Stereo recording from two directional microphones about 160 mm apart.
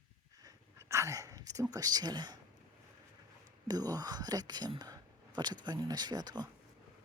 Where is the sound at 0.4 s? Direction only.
20° right (ahead or behind).